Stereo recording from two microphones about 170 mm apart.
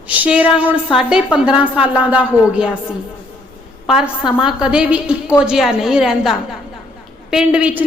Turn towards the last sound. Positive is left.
turn(degrees=-10)  # may be behind; listen again after turning